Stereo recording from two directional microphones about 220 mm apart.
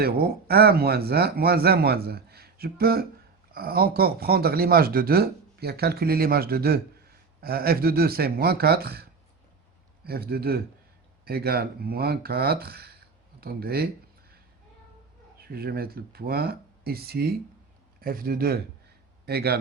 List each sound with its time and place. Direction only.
0.0 s speech: 45° right (ahead or behind)
15.4 s a man's voice: 45° right (ahead or behind)